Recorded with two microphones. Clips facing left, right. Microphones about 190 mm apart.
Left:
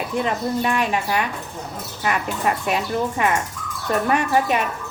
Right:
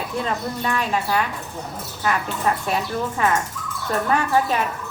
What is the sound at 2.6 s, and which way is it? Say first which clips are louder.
Speech: left 2 dB; 15° left (ahead or behind).